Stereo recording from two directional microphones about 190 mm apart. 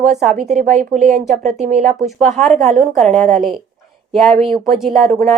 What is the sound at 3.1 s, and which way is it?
Speech, 40° right (ahead or behind).